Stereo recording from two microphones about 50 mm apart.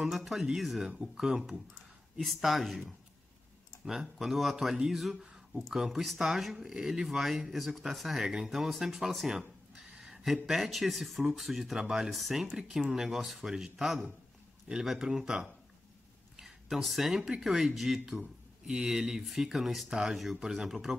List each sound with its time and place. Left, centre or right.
0.0 s speech: centre
9.9 s a sound: centre
10.3 s speech: centre
12.1 s speech: centre
12.4 s speech: centre
12.9 s speech: centre
16.3 s a sound: centre
17.3 s speech: centre